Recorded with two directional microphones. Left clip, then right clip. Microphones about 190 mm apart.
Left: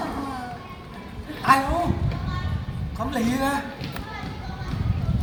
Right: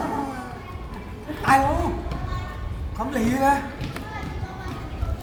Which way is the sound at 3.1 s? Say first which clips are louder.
Right 4 dB; 30° right (ahead or behind).